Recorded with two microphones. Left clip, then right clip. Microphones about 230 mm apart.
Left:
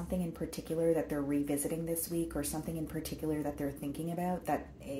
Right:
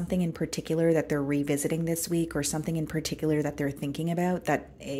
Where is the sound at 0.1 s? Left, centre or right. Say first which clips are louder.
Right 7 dB; right.